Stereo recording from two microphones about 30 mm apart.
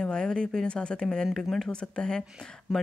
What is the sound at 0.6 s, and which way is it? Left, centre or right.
Speech, left.